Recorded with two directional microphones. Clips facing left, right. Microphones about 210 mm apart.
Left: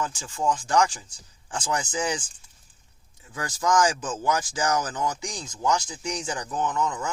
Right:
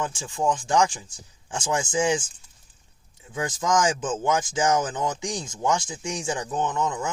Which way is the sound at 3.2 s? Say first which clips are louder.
Right 1 dB; 25° right (ahead or behind).